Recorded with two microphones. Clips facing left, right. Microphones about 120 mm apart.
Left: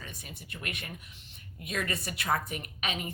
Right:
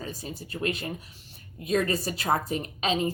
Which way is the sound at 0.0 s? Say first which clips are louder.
Right 9 dB; 30° right (ahead or behind).